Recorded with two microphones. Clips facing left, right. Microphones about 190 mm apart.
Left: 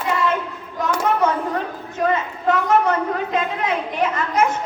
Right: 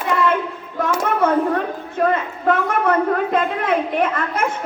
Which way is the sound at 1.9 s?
55° right (ahead or behind).